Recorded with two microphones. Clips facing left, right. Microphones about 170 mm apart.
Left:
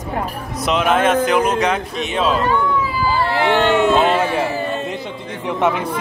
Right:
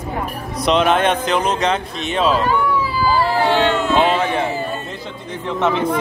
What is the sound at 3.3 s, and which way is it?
Speech, 65° left (ahead or behind).